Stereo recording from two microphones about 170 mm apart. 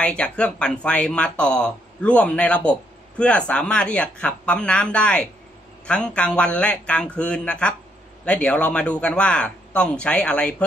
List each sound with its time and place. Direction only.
0.0 s speech: 5° left (ahead or behind)